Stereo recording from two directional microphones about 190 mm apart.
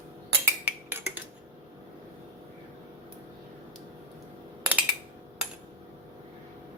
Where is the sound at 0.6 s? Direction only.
10° right (ahead or behind).